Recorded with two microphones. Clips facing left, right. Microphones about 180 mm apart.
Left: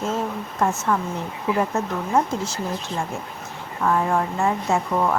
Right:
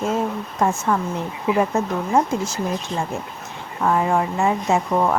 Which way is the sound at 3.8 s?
15° right (ahead or behind).